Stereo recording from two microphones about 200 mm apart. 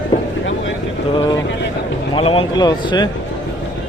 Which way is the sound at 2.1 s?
30° left (ahead or behind).